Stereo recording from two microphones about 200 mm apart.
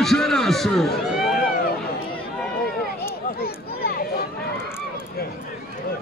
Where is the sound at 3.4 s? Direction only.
50° left (ahead or behind).